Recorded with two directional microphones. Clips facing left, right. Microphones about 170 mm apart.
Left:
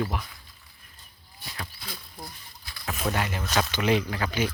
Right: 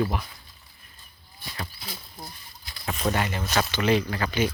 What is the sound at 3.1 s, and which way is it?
Speech, centre (ahead or behind).